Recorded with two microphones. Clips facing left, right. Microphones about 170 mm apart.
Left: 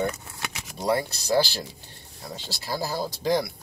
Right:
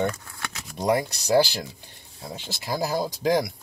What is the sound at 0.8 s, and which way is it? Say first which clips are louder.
Speech: right 2 dB; 15° right (ahead or behind).